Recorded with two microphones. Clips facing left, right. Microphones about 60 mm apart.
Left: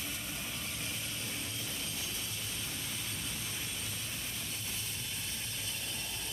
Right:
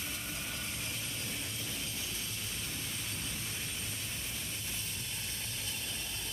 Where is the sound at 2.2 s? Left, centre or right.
Centre.